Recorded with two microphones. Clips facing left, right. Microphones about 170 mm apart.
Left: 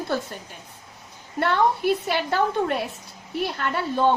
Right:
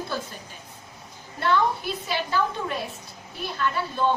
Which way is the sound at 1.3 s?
65° left (ahead or behind).